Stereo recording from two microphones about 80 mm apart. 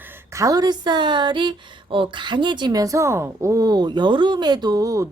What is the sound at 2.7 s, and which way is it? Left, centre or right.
A woman's voice, right.